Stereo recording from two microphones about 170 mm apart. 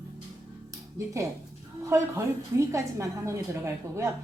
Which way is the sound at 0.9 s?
15° right (ahead or behind).